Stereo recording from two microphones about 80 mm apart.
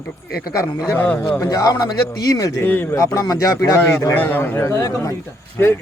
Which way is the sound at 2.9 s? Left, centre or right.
Left.